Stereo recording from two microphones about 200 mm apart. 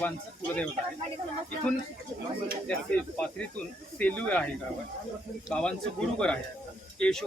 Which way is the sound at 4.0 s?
5° left (ahead or behind).